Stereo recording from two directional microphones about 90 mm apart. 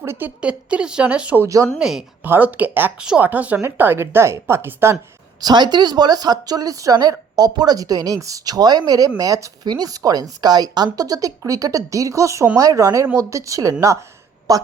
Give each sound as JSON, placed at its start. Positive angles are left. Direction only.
{"t": 0.0, "sound": "speech", "side_deg": -25}
{"t": 1.5, "sound": "speech", "side_deg": -40}
{"t": 1.8, "sound": "speech", "side_deg": -5}
{"t": 2.2, "sound": "a woman's voice", "side_deg": -20}
{"t": 5.4, "sound": "speech", "side_deg": -50}